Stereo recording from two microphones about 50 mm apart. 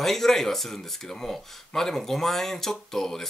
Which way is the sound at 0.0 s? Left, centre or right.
Centre.